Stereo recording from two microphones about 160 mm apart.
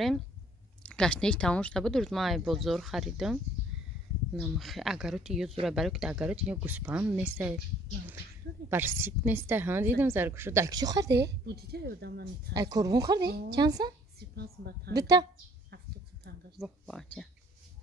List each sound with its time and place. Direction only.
0.8 s speech: 5° left (ahead or behind)
4.4 s a woman's voice: centre (ahead or behind)
8.6 s a woman's voice: 15° right (ahead or behind)
11.1 s a woman's voice: 90° right
12.5 s speech: 25° right (ahead or behind)
14.3 s a woman's voice: 90° right
15.0 s speech: 25° right (ahead or behind)
16.5 s speech: centre (ahead or behind)